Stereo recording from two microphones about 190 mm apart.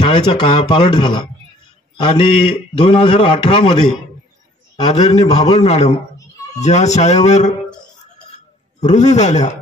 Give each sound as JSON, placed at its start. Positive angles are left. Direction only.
{"t": 0.0, "sound": "a man's voice", "side_deg": 25}
{"t": 5.0, "sound": "a man's voice", "side_deg": 20}
{"t": 5.4, "sound": "speech", "side_deg": 30}
{"t": 8.7, "sound": "speech", "side_deg": 35}